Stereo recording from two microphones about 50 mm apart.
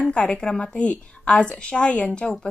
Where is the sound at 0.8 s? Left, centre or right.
Left.